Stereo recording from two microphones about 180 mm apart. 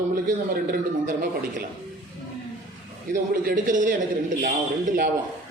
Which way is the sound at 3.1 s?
45° right (ahead or behind).